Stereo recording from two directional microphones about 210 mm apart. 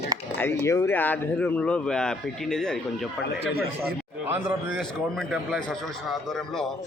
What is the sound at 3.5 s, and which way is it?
Speech, 50° right (ahead or behind).